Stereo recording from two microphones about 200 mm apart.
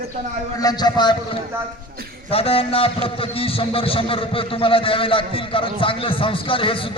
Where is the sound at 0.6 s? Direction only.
20° left (ahead or behind).